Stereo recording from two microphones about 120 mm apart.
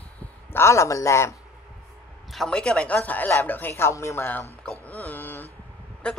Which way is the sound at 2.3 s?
5° left (ahead or behind).